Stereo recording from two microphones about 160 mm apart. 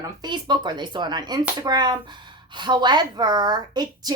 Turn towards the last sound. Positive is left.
turn(degrees=-25)  # may be behind; listen again after turning